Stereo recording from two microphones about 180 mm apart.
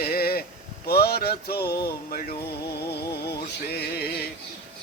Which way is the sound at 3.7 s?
65° left (ahead or behind).